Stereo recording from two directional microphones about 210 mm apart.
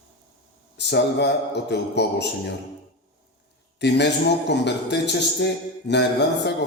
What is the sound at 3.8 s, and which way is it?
A man's voice, 55° left (ahead or behind).